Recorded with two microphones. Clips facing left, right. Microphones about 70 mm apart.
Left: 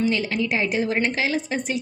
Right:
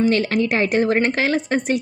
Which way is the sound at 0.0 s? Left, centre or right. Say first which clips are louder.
Right 5 dB; right.